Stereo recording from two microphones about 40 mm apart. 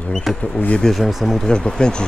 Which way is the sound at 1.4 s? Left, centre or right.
Centre.